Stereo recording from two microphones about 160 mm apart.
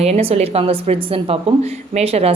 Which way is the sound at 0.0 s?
40° right (ahead or behind).